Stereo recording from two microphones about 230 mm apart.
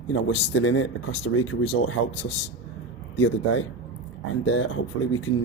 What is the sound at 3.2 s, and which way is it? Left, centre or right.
Speech, left.